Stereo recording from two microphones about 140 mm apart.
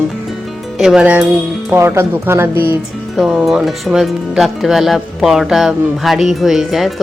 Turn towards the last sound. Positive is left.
turn(degrees=0)  # may be behind; listen again after turning